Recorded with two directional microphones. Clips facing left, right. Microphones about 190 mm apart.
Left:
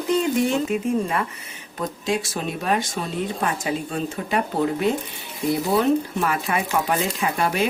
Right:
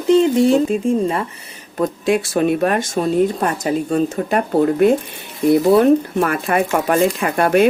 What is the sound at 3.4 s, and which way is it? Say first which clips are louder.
Speech: right 6 dB; 45° right (ahead or behind).